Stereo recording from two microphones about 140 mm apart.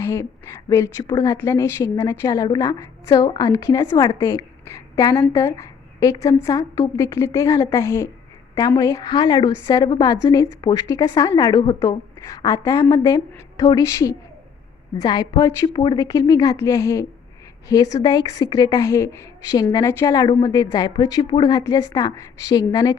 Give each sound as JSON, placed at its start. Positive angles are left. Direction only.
{"t": 0.0, "sound": "a woman's voice", "side_deg": 20}
{"t": 4.6, "sound": "a sound", "side_deg": 20}
{"t": 5.2, "sound": "a woman's voice", "side_deg": 20}